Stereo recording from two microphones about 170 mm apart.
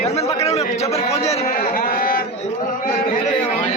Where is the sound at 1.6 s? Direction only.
60° left (ahead or behind).